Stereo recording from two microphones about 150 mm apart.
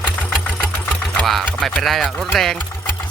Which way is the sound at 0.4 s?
5° left (ahead or behind).